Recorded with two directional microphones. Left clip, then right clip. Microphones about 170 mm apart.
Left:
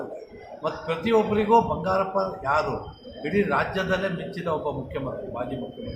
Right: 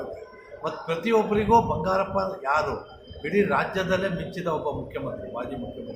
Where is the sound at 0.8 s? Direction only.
10° right (ahead or behind).